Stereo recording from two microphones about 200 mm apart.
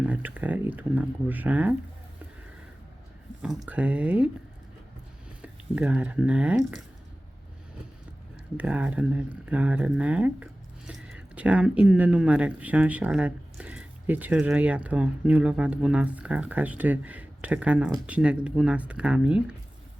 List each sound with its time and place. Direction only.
0.0 s speech: 5° right (ahead or behind)
3.7 s speech: 5° right (ahead or behind)
5.4 s speech: 5° right (ahead or behind)
8.5 s speech: 5° right (ahead or behind)